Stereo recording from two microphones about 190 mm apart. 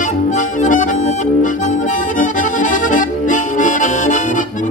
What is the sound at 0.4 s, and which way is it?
Accordion, 40° left (ahead or behind).